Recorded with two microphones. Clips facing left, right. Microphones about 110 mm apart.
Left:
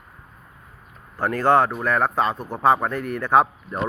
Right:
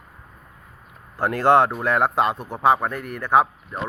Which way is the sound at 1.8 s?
25° right (ahead or behind).